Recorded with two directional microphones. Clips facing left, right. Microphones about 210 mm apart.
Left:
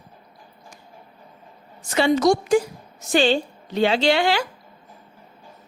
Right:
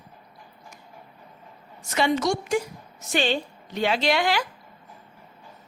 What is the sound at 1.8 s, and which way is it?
A woman's voice, 30° left (ahead or behind).